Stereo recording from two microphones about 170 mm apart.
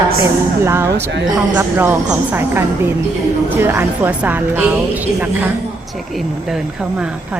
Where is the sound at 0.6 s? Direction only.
15° right (ahead or behind).